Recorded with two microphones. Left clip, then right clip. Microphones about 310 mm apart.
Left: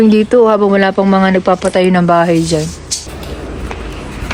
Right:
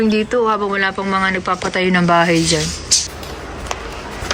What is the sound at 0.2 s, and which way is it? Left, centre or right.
Speech, centre.